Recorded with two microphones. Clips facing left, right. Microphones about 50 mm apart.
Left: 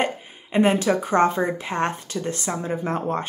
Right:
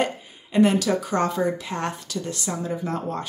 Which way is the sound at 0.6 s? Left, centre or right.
Left.